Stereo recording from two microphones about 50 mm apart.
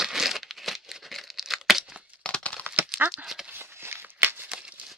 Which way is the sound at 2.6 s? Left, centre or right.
Right.